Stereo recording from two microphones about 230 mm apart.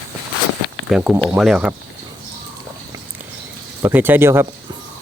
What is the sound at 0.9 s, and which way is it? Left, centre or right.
Speech, centre.